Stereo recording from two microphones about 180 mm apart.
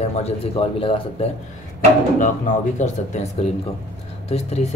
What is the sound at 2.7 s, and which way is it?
Speech, 40° left (ahead or behind).